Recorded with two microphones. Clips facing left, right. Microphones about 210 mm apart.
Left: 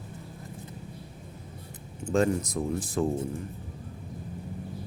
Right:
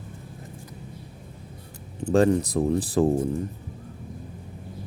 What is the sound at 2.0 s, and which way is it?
Speech, 35° right (ahead or behind).